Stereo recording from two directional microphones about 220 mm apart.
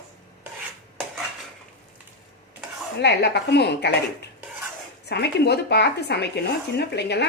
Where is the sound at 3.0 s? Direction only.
50° left (ahead or behind).